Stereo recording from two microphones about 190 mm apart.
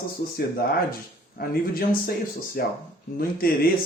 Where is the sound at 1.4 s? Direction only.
50° left (ahead or behind).